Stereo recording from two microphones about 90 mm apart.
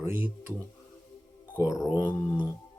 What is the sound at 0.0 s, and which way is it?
Speech, 25° right (ahead or behind).